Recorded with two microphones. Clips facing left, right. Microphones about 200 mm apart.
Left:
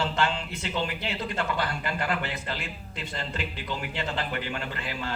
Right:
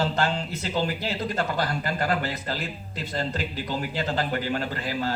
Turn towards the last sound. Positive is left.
turn(degrees=-40)  # may be behind; listen again after turning